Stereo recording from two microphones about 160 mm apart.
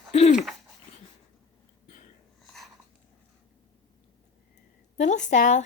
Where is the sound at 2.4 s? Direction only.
Centre (ahead or behind).